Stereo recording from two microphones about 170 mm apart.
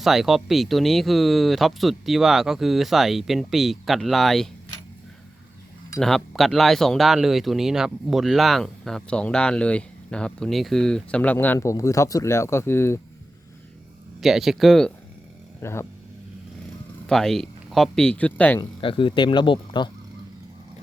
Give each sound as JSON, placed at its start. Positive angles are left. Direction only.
{"t": 0.0, "sound": "speech", "side_deg": 0}
{"t": 6.0, "sound": "speech", "side_deg": 0}
{"t": 14.2, "sound": "speech", "side_deg": 0}
{"t": 15.6, "sound": "speech", "side_deg": 15}
{"t": 17.1, "sound": "speech", "side_deg": 0}
{"t": 18.6, "sound": "speech", "side_deg": 30}